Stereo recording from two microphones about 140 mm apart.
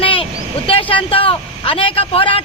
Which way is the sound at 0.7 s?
40° left (ahead or behind).